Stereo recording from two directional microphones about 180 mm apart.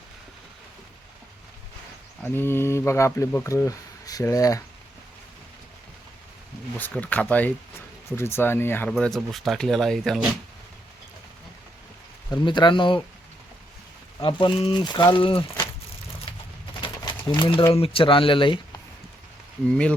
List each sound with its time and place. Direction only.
2.2 s speech: 10° left (ahead or behind)
7.0 s speech: 10° left (ahead or behind)
12.3 s speech: 25° left (ahead or behind)
14.2 s speech: 30° left (ahead or behind)
16.3 s a sound: 30° left (ahead or behind)
17.7 s speech: 30° left (ahead or behind)